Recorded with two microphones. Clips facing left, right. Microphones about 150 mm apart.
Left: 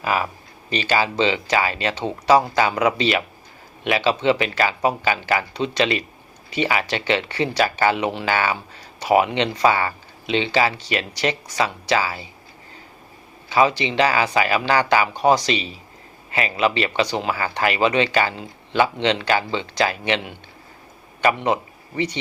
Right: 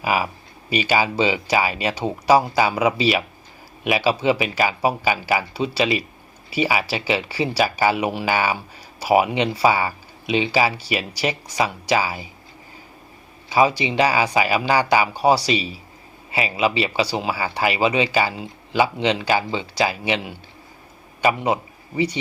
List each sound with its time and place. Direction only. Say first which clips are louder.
0.0 s speech: right 1 dB; 10° right (ahead or behind)
13.5 s speech: even; 10° right (ahead or behind)